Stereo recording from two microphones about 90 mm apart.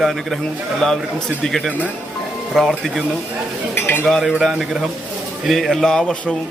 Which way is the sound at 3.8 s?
20° left (ahead or behind).